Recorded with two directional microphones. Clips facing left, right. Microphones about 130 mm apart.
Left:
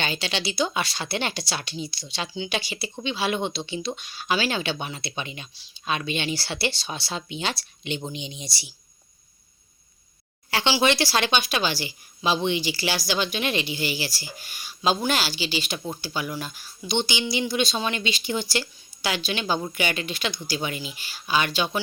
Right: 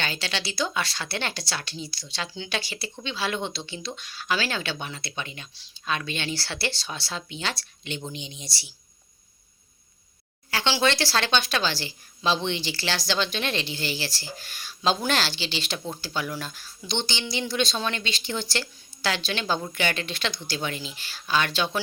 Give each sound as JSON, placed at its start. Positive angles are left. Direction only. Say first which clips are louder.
{"t": 0.0, "sound": "speech", "louder": "left 3 dB", "side_deg": 20}
{"t": 10.5, "sound": "speech", "louder": "left 2 dB", "side_deg": 15}